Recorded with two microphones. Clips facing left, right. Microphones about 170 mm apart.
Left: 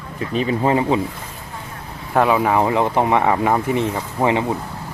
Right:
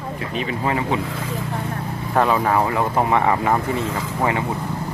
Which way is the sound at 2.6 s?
25° left (ahead or behind).